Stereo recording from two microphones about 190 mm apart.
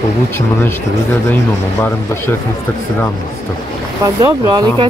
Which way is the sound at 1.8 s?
10° left (ahead or behind).